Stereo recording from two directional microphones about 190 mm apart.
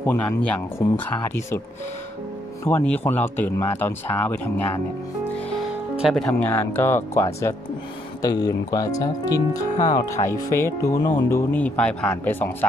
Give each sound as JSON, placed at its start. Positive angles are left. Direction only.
{"t": 0.0, "sound": "speech", "side_deg": 10}
{"t": 2.6, "sound": "speech", "side_deg": 10}
{"t": 5.6, "sound": "speech", "side_deg": 0}